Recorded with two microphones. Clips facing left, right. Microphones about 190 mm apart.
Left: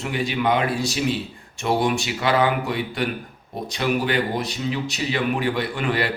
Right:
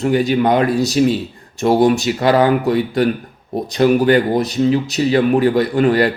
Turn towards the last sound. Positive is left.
turn(degrees=-40)  # may be behind; listen again after turning